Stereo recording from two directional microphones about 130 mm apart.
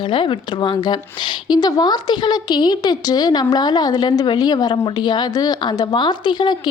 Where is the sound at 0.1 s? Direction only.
40° left (ahead or behind).